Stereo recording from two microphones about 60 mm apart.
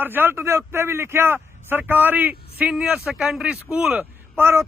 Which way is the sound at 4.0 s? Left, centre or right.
Right.